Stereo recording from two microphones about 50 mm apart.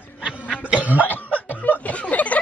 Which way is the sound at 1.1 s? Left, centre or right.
Left.